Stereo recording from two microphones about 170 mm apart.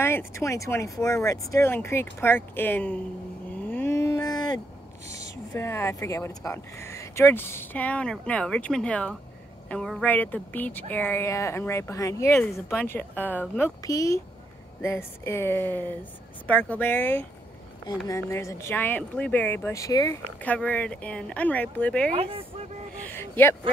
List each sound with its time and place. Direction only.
0.0 s speech: 15° left (ahead or behind)
3.6 s a sound: 10° left (ahead or behind)
5.1 s speech: 15° left (ahead or behind)
20.4 s speech: 10° left (ahead or behind)
22.1 s speech: 35° right (ahead or behind)
23.0 s vehicle: 10° left (ahead or behind)